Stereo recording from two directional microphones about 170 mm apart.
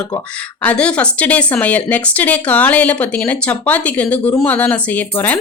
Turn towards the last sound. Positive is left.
turn(degrees=10)  # may be behind; listen again after turning